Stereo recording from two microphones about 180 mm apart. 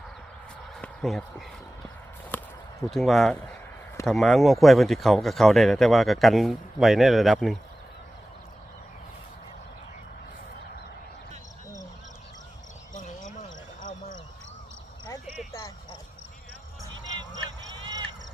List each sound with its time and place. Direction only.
0.8 s speech: centre (ahead or behind)
2.3 s a sound: 10° left (ahead or behind)
2.9 s speech: centre (ahead or behind)
12.9 s basketball bounce: 45° left (ahead or behind)